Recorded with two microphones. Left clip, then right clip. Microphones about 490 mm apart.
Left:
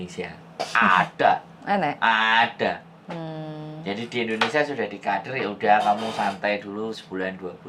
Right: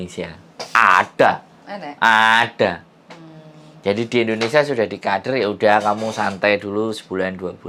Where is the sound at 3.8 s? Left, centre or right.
Right.